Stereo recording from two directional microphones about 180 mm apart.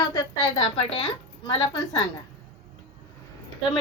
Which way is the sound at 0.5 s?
30° left (ahead or behind).